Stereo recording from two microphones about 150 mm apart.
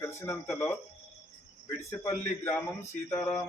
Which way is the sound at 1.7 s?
15° left (ahead or behind).